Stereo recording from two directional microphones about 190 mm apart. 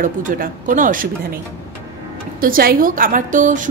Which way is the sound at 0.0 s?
45° right (ahead or behind).